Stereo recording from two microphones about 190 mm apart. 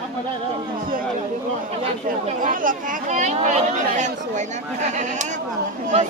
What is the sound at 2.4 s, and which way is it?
Speech, 45° right (ahead or behind).